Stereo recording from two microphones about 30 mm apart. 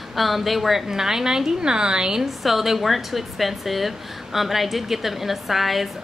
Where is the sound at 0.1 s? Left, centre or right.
Centre; by 2.2 s right.